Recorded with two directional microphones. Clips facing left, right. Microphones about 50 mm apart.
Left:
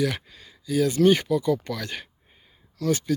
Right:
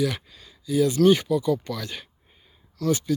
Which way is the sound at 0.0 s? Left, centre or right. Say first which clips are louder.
Even; left.